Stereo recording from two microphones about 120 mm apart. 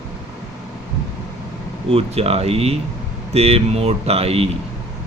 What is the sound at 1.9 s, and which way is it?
Speech, 55° right (ahead or behind).